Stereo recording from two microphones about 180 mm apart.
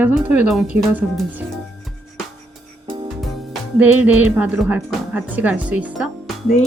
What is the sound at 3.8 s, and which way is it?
Speech, 10° right (ahead or behind).